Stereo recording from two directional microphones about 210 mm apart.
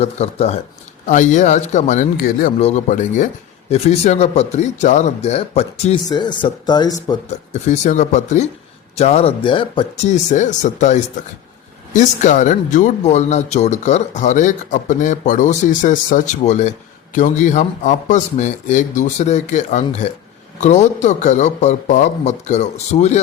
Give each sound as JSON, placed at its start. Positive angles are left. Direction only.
{"t": 0.0, "sound": "speech", "side_deg": 30}
{"t": 2.6, "sound": "speech", "side_deg": 30}
{"t": 7.3, "sound": "speech", "side_deg": 35}